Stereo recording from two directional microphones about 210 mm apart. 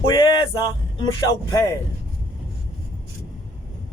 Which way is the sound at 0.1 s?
20° left (ahead or behind).